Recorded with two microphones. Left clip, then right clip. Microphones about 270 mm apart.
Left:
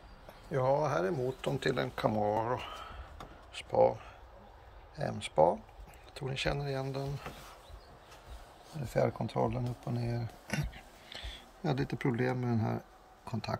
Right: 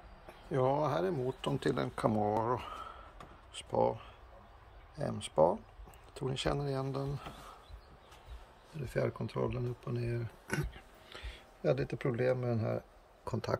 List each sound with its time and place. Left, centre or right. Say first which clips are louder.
0.5 s speech: left 1 dB; centre
8.9 s speech: left 4 dB; centre
13.2 s speech: right 2 dB; centre